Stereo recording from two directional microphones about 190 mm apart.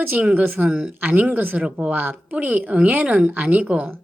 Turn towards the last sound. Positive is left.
turn(degrees=-10)  # may be behind; listen again after turning